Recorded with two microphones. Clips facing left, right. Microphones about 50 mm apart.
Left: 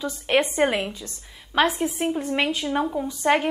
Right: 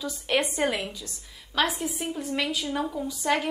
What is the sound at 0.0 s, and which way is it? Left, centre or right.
A woman's voice, left.